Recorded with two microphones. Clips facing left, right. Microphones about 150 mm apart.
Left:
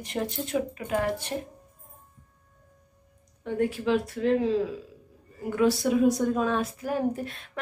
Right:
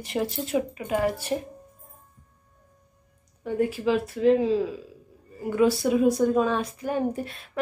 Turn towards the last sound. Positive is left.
turn(degrees=0)  # may be behind; listen again after turning